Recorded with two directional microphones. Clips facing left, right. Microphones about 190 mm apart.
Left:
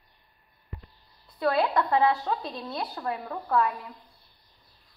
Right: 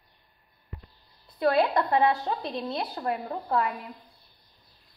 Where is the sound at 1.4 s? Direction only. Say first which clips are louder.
Right 2 dB; 20° right (ahead or behind).